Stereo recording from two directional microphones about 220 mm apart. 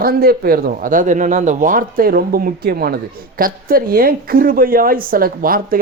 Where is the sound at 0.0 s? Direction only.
45° right (ahead or behind).